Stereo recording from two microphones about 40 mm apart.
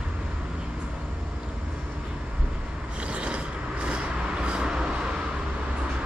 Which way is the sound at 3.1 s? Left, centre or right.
Right.